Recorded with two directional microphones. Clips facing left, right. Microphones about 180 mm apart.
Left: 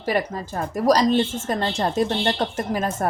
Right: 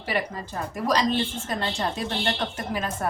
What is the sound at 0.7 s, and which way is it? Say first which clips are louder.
Speech: left 6 dB; 40° left (ahead or behind).